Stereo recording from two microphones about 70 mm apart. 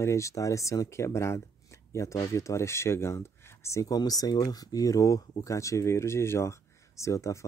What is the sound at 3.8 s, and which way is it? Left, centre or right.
Speech, left.